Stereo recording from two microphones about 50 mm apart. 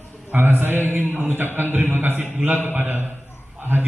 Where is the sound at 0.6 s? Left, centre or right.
Right.